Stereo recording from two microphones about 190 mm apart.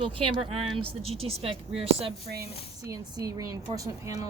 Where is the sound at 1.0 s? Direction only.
30° right (ahead or behind).